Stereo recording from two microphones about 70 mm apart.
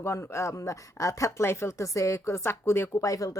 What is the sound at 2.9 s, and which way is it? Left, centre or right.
Speech, left.